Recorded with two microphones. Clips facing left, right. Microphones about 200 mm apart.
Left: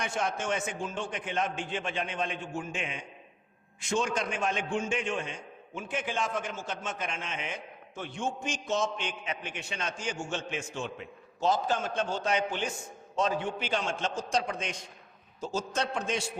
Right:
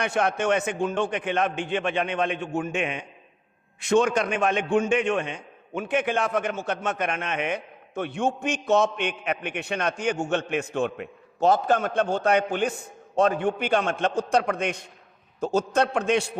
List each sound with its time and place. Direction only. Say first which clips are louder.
0.0 s a man's voice: right 8 dB; 65° right (ahead or behind)